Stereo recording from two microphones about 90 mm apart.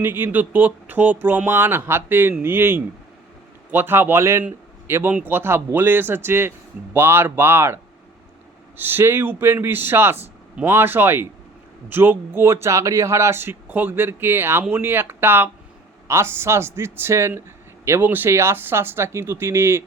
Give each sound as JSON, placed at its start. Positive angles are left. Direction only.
{"t": 0.0, "sound": "speech", "side_deg": -20}
{"t": 8.8, "sound": "speech", "side_deg": -25}